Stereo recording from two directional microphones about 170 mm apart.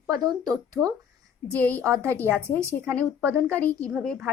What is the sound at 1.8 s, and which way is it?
A woman's voice, 15° right (ahead or behind).